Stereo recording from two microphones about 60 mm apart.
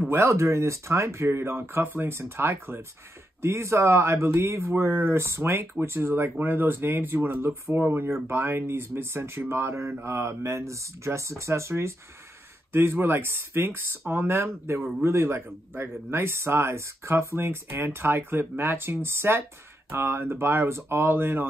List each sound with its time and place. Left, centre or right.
0.1 s speech: right